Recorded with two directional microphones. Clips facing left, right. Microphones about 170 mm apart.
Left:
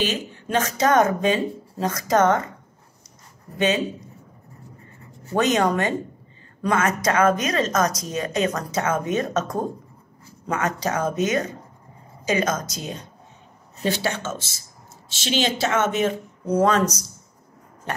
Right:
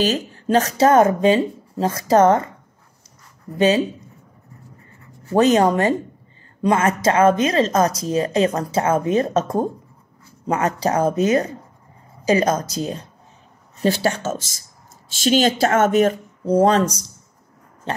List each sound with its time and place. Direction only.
0.0 s speech: 40° right (ahead or behind)
3.5 s speech: 35° right (ahead or behind)
5.3 s speech: 30° right (ahead or behind)
17.9 s a sound: 25° right (ahead or behind)